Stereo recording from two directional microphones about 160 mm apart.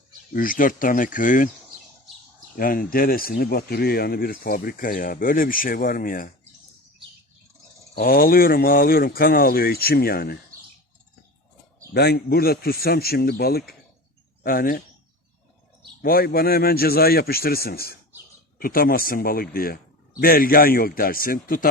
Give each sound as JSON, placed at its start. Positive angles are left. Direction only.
{"t": 0.3, "sound": "speech", "side_deg": 60}
{"t": 2.6, "sound": "speech", "side_deg": 60}
{"t": 7.9, "sound": "speech", "side_deg": 65}
{"t": 11.9, "sound": "speech", "side_deg": 85}
{"t": 14.4, "sound": "speech", "side_deg": 65}
{"t": 16.0, "sound": "speech", "side_deg": 70}